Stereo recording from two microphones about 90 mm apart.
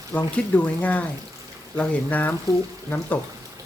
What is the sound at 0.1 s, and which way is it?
Speech, 20° left (ahead or behind).